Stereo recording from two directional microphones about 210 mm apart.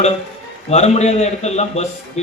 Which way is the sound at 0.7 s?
30° left (ahead or behind).